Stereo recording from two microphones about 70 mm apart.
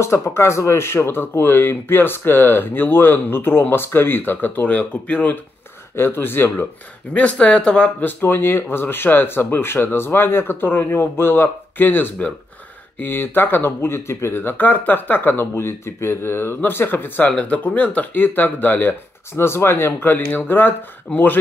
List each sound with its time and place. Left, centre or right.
0.0 s speech: left
5.9 s speech: left
7.2 s speech: centre
8.0 s speech: left
17.3 s speech: centre